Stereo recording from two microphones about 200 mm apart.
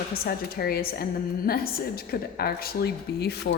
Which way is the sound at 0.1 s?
50° left (ahead or behind).